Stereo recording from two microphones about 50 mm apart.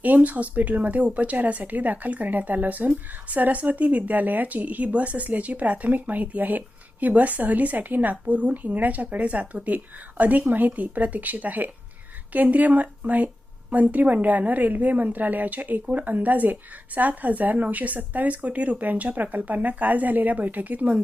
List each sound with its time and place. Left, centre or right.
0.0 s speech: right